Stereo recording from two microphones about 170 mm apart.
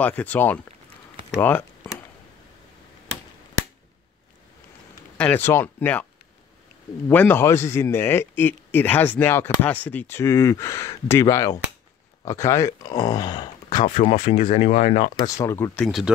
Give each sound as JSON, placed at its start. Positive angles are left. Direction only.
{"t": 0.0, "sound": "a man's voice", "side_deg": 10}
{"t": 5.1, "sound": "speech", "side_deg": 10}
{"t": 7.1, "sound": "a man's voice", "side_deg": 10}
{"t": 14.4, "sound": "speech", "side_deg": 45}
{"t": 15.3, "sound": "a man's voice", "side_deg": 15}
{"t": 15.8, "sound": "speech", "side_deg": 0}